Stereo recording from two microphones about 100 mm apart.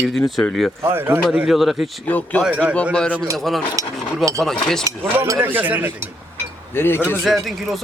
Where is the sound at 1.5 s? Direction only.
5° right (ahead or behind).